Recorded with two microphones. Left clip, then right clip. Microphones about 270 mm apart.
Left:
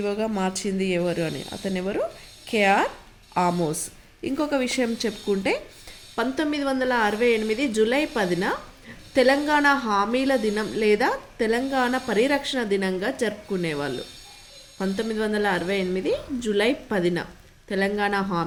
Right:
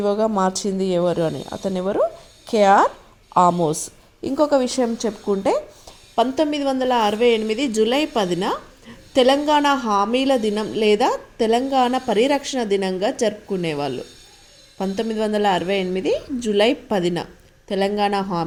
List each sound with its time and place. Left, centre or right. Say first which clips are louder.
0.0 s a woman's voice: right 7 dB; centre
0.9 s speech: right 6 dB; centre
1.6 s a woman's voice: right 7 dB; centre